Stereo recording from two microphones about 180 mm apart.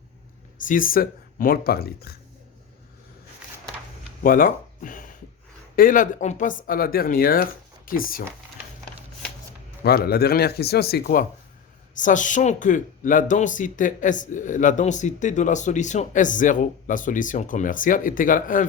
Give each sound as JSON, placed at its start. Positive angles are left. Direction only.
{"t": 0.6, "sound": "speech", "side_deg": 50}
{"t": 4.2, "sound": "a sound", "side_deg": 50}
{"t": 5.7, "sound": "speech", "side_deg": 50}
{"t": 9.8, "sound": "speech", "side_deg": 60}